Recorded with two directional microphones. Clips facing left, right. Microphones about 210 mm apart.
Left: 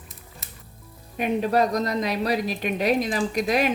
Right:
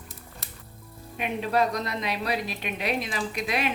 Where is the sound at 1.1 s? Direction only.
40° left (ahead or behind).